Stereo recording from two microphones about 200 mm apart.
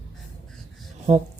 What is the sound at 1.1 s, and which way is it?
Speech, 35° right (ahead or behind).